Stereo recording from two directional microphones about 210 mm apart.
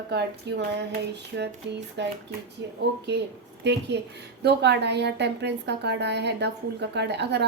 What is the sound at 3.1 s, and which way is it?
A woman's voice, 55° right (ahead or behind).